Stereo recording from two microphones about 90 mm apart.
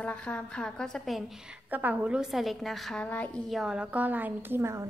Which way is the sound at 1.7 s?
20° right (ahead or behind).